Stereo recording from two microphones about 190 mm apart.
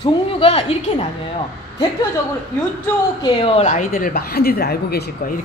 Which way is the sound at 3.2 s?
30° left (ahead or behind).